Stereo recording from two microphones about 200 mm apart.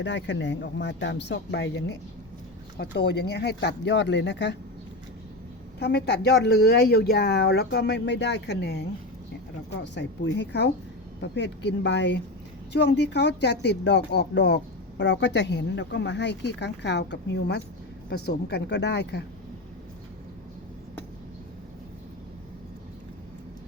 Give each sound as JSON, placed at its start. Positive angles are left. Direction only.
{"t": 0.0, "sound": "speech", "side_deg": 60}
{"t": 5.8, "sound": "speech", "side_deg": 55}